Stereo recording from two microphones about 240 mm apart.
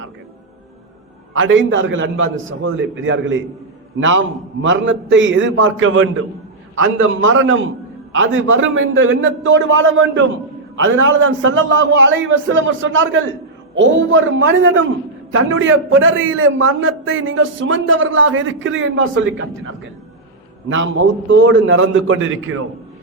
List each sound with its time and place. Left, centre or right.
1.3 s a man's voice: right
4.6 s a man's voice: right